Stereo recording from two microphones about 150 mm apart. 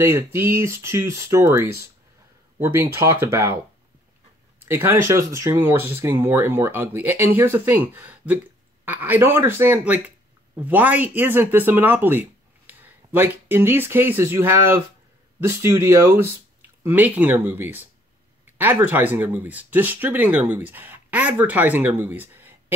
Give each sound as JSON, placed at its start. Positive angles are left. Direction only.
{"t": 0.0, "sound": "speech", "side_deg": -15}
{"t": 4.6, "sound": "speech", "side_deg": -15}